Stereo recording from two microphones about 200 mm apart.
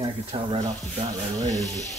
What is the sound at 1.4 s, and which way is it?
Speech, 15° right (ahead or behind).